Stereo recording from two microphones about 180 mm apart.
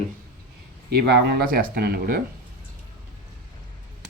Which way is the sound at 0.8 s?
65° right (ahead or behind).